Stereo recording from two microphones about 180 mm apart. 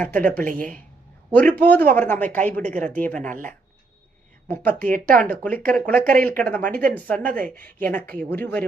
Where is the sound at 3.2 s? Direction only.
45° right (ahead or behind).